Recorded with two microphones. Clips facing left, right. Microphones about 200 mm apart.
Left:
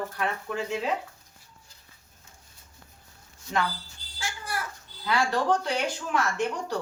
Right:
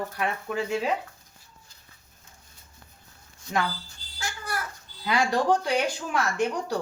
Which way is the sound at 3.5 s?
15° right (ahead or behind).